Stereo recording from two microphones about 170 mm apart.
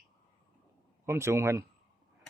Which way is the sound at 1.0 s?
15° right (ahead or behind).